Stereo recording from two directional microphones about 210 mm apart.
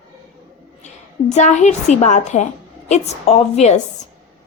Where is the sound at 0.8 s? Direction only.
35° left (ahead or behind).